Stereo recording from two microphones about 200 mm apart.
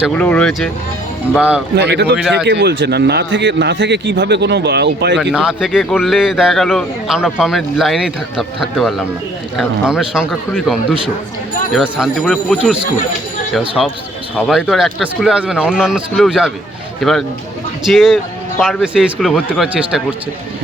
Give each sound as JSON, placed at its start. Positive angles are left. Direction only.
{"t": 0.0, "sound": "a man's voice", "side_deg": 5}
{"t": 1.4, "sound": "speech", "side_deg": -5}
{"t": 1.7, "sound": "a man's voice", "side_deg": -55}
{"t": 5.3, "sound": "a man's voice", "side_deg": -5}
{"t": 11.7, "sound": "a man's voice", "side_deg": 0}